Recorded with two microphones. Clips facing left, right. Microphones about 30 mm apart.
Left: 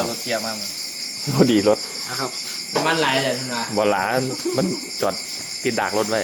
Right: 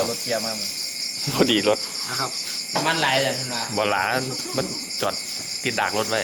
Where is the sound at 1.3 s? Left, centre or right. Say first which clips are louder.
Left 3 dB; right.